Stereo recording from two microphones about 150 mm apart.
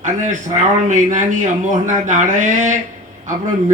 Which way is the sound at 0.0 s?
55° right (ahead or behind).